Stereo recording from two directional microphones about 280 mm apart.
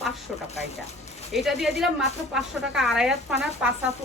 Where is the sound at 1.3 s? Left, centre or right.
Centre.